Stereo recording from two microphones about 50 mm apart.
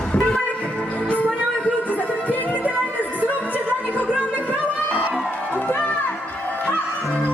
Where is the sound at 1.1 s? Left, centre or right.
Left.